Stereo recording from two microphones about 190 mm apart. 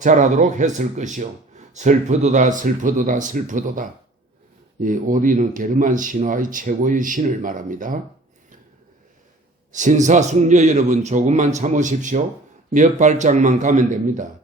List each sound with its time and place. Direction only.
0.0 s speech: 40° right (ahead or behind)
9.7 s speech: 40° right (ahead or behind)